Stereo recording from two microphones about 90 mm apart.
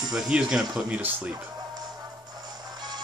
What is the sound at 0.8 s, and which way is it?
Speech, 15° right (ahead or behind).